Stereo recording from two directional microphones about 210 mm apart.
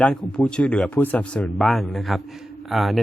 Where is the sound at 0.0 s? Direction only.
5° left (ahead or behind).